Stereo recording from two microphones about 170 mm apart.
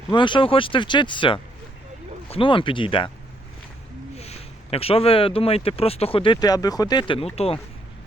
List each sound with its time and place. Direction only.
0.1 s speech: 30° left (ahead or behind)
4.1 s speech: 40° left (ahead or behind); by 7.0 s 20° left (ahead or behind)
7.3 s speech: 35° left (ahead or behind)